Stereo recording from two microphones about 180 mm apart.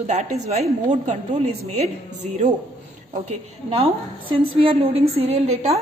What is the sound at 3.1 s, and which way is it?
A woman's voice, 35° right (ahead or behind).